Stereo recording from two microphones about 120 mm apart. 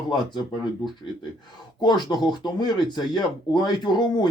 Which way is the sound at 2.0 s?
35° left (ahead or behind).